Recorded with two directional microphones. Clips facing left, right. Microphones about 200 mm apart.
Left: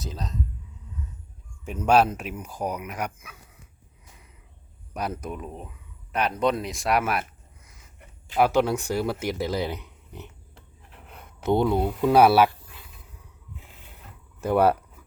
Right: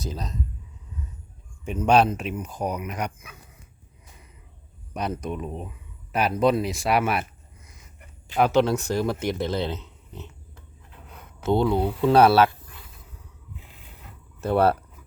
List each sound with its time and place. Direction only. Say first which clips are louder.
0.0 s speech: right 2 dB; centre (ahead or behind)
1.6 s speech: right 1 dB; 5° left (ahead or behind)
5.2 s speech: right 4 dB; centre (ahead or behind)
8.4 s speech: right 1 dB; 10° left (ahead or behind)
11.4 s speech: even; 20° left (ahead or behind)
11.8 s speech: right 1 dB; centre (ahead or behind)
12.0 s speech: right 1 dB; 10° left (ahead or behind)
14.4 s speech: even; 15° left (ahead or behind)